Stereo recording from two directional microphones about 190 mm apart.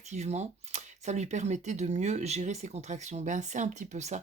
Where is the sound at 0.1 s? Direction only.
35° right (ahead or behind).